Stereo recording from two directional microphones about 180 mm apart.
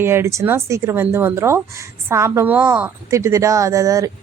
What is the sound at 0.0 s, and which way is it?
Speech, 15° right (ahead or behind).